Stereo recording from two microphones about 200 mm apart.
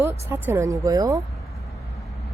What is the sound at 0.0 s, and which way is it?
Speech, 15° right (ahead or behind).